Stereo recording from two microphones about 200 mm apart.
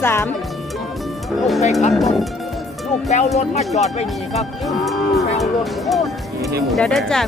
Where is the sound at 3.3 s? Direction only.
35° left (ahead or behind).